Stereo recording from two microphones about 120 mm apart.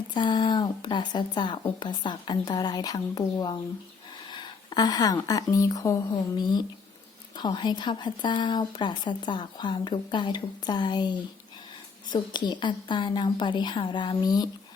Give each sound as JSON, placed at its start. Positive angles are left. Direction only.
{"t": 0.1, "sound": "a woman's voice", "side_deg": 40}